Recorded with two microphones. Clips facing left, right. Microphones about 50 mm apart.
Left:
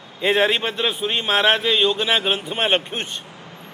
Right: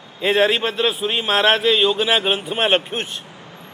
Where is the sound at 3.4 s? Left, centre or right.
Right.